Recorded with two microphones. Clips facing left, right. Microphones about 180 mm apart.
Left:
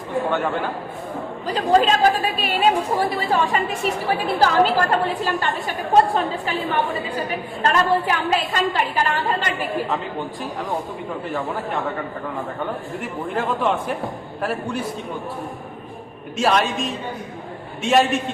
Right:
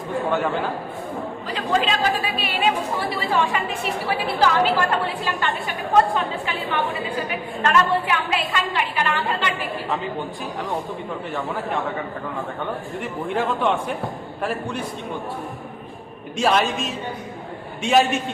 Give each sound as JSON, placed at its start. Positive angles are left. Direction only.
{"t": 0.3, "sound": "a man's voice", "side_deg": 0}
{"t": 1.5, "sound": "a woman's voice", "side_deg": 40}
{"t": 13.0, "sound": "a man's voice", "side_deg": 0}
{"t": 16.4, "sound": "a man's voice", "side_deg": 0}